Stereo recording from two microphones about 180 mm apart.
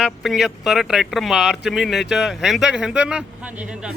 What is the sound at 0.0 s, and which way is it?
Speech, centre (ahead or behind).